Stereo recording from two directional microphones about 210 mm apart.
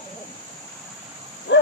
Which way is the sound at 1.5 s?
55° left (ahead or behind).